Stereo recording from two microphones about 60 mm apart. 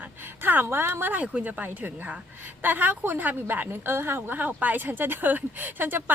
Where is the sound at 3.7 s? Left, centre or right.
Right.